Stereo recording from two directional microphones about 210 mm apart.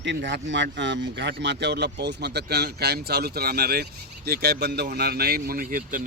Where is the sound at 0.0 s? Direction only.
55° right (ahead or behind).